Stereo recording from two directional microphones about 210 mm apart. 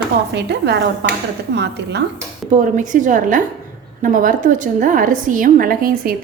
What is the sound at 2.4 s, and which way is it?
Speech, 5° right (ahead or behind).